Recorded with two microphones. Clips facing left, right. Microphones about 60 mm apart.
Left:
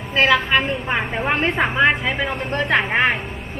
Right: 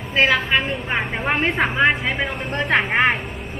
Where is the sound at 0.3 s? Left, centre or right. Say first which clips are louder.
Left 2 dB; centre.